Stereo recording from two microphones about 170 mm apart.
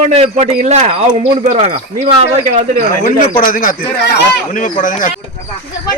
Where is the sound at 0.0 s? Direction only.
40° right (ahead or behind).